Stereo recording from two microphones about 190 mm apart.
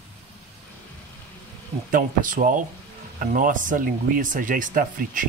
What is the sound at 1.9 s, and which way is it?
Speech, 45° right (ahead or behind).